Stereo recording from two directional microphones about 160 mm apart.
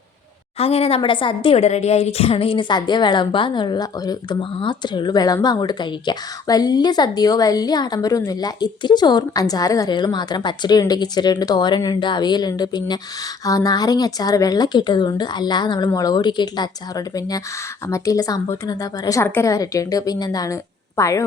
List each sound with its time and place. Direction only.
0.6 s a woman's voice: 40° left (ahead or behind); by 21.2 s 20° left (ahead or behind)